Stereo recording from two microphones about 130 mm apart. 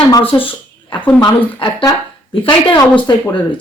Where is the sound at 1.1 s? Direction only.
35° left (ahead or behind).